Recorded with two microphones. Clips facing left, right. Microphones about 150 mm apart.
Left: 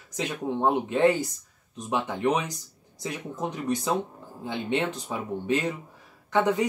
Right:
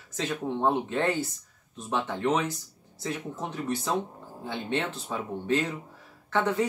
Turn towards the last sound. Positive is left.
turn(degrees=15)  # may be behind; listen again after turning